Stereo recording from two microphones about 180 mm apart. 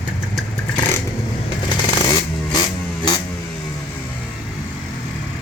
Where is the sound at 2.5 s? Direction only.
20° left (ahead or behind).